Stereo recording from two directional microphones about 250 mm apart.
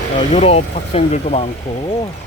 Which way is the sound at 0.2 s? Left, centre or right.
Left.